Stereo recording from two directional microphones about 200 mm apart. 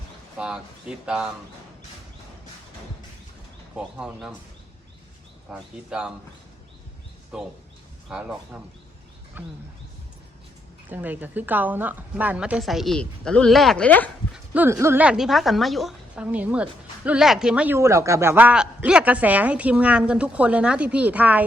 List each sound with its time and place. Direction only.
0.3 s a woman's voice: 5° right (ahead or behind)
3.8 s a woman's voice: 5° right (ahead or behind)
5.5 s a woman's voice: 5° right (ahead or behind)
7.3 s a woman's voice: 5° right (ahead or behind)
10.8 s a woman's voice: 10° right (ahead or behind); by 14.1 s 10° left (ahead or behind)
14.3 s speech: 10° right (ahead or behind)